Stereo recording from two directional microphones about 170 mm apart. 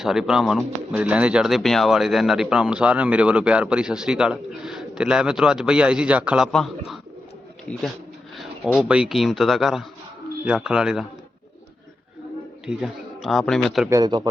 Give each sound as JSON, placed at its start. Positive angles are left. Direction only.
{"t": 0.0, "sound": "speech", "side_deg": -5}
{"t": 8.4, "sound": "speech", "side_deg": 0}
{"t": 12.6, "sound": "speech", "side_deg": -5}
{"t": 13.9, "sound": "speech", "side_deg": -20}